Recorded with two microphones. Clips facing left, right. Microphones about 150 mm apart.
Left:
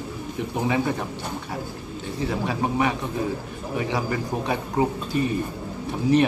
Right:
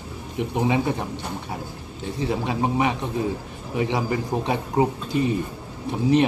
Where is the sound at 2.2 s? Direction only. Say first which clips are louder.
Right 1 dB; 20° right (ahead or behind).